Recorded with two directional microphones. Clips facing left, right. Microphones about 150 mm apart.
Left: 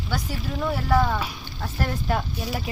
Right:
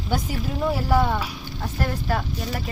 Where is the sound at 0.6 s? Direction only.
5° right (ahead or behind).